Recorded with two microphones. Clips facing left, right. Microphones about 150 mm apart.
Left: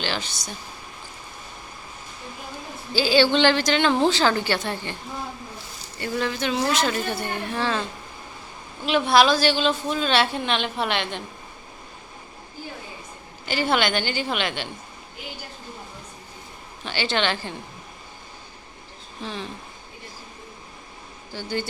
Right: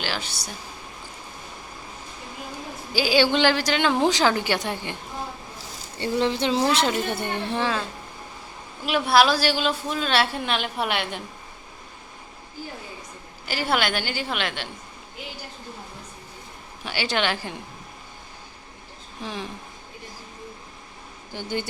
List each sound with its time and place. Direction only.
0.0 s a woman's voice: 5° right (ahead or behind)
2.9 s a woman's voice: 10° right (ahead or behind)
6.0 s speech: 25° right (ahead or behind)
7.6 s a woman's voice: 5° right (ahead or behind)
8.9 s a woman's voice: 5° right (ahead or behind)
13.4 s a woman's voice: 5° right (ahead or behind)
16.8 s a woman's voice: 10° right (ahead or behind)
19.2 s a woman's voice: 10° right (ahead or behind)
21.3 s a woman's voice: 15° right (ahead or behind)